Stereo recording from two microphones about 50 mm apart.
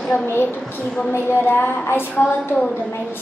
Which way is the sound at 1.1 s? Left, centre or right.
Left.